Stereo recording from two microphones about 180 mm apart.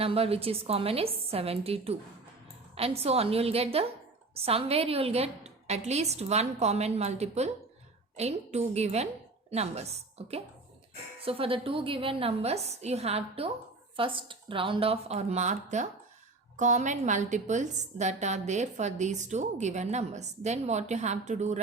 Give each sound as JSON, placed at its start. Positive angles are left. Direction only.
{"t": 0.0, "sound": "a woman's voice", "side_deg": -35}
{"t": 11.3, "sound": "a woman's voice", "side_deg": -30}